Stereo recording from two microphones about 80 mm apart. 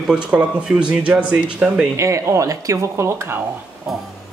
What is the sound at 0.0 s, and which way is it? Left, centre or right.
Speech, centre.